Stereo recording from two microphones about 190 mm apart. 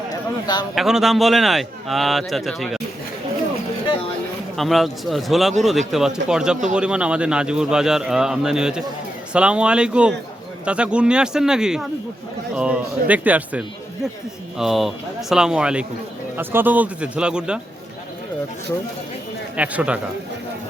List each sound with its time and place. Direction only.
0.1 s a sound: 20° left (ahead or behind)
0.8 s a man's voice: centre (ahead or behind)
4.5 s a man's voice: centre (ahead or behind)
19.5 s a man's voice: 5° right (ahead or behind)